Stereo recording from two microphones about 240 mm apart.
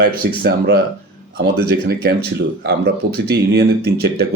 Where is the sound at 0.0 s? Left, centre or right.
Right.